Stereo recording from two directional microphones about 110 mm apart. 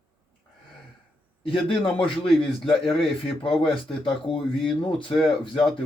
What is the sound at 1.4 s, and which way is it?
Speech, 55° left (ahead or behind).